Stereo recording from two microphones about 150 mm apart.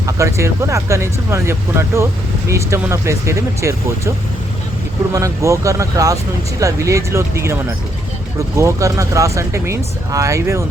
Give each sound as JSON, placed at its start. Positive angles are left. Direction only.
{"t": 0.0, "sound": "speech", "side_deg": -20}
{"t": 5.1, "sound": "speech", "side_deg": -20}